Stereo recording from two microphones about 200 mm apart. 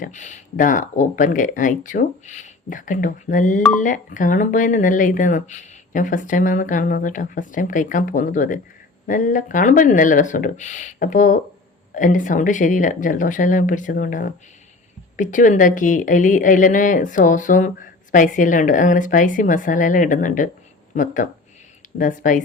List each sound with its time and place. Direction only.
0.0 s speech: 40° left (ahead or behind)